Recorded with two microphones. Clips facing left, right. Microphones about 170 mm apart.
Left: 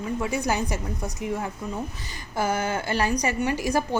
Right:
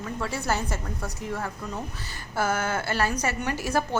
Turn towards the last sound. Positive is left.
turn(degrees=15)  # may be behind; listen again after turning